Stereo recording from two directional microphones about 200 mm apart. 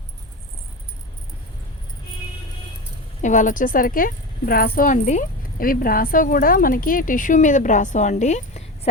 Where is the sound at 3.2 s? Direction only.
40° left (ahead or behind).